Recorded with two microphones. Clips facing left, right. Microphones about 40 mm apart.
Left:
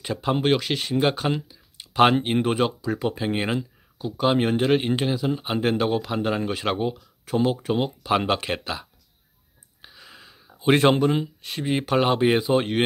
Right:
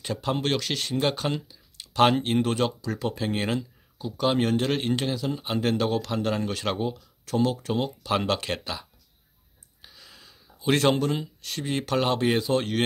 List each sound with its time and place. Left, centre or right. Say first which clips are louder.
0.0 s speech: left 4 dB; centre